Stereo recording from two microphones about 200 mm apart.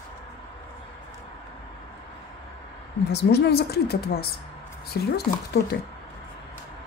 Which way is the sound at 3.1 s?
55° left (ahead or behind).